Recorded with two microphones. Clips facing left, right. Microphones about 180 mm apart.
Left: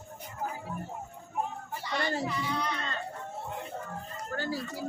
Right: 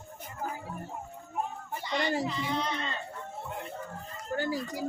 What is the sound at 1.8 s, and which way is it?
Speech, 20° right (ahead or behind).